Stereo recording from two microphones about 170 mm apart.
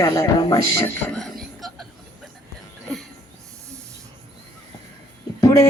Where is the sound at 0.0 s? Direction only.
20° left (ahead or behind).